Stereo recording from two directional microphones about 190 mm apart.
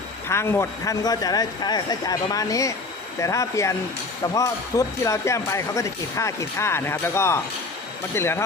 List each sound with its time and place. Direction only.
0.3 s a man's voice: 15° left (ahead or behind)